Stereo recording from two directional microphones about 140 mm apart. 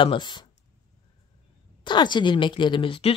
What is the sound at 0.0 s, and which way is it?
Speech, 35° left (ahead or behind).